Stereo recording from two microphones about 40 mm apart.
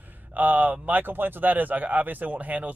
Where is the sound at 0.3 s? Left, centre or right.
Right.